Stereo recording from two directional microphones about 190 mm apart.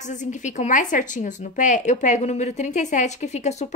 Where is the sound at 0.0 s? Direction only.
40° left (ahead or behind).